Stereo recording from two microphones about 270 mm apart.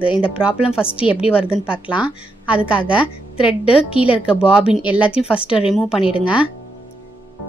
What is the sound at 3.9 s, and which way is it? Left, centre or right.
Speech, centre.